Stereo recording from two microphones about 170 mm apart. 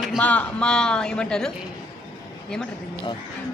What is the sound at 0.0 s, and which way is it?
A man's voice, 5° left (ahead or behind).